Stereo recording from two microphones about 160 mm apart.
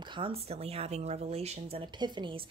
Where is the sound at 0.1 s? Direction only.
35° right (ahead or behind).